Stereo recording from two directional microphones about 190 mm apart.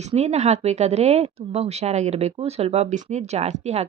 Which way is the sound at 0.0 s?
35° right (ahead or behind).